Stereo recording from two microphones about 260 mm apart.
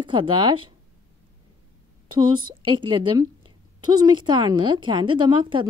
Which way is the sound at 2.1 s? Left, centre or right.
Centre.